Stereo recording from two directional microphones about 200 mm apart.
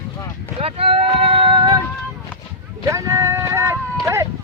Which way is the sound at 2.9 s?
15° right (ahead or behind).